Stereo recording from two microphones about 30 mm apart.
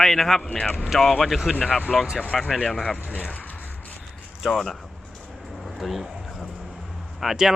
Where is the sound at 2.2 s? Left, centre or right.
Left.